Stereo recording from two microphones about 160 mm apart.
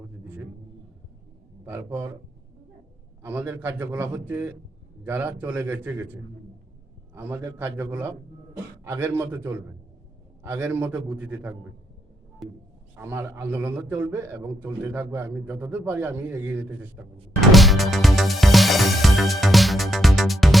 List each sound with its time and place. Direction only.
1.6 s a man's voice: 15° right (ahead or behind)
3.2 s a man's voice: 10° right (ahead or behind)
7.1 s a man's voice: 15° right (ahead or behind)
12.4 s speech: centre (ahead or behind)
13.0 s a man's voice: 15° right (ahead or behind)
17.4 s music: centre (ahead or behind)